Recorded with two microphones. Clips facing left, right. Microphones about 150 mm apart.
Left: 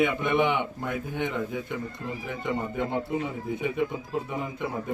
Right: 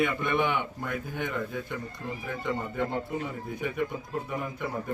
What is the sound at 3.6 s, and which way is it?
Speech, 20° left (ahead or behind).